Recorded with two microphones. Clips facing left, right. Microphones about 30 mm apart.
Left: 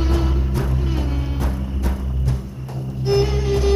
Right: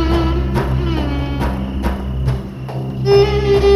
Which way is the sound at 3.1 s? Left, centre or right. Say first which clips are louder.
Right 8 dB; right.